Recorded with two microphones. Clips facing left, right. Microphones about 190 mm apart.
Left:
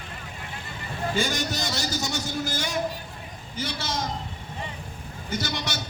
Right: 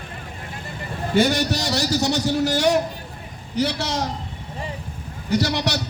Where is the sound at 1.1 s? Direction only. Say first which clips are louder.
Right 10 dB; 65° right (ahead or behind).